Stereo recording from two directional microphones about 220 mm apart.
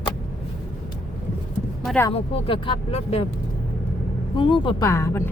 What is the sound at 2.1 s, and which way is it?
Speech, 25° left (ahead or behind).